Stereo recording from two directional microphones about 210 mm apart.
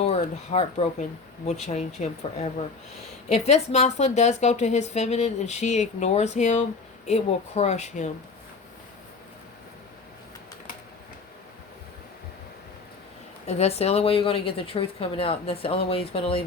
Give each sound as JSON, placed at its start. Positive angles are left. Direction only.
{"t": 0.0, "sound": "a woman's voice", "side_deg": 30}
{"t": 13.5, "sound": "speech", "side_deg": 30}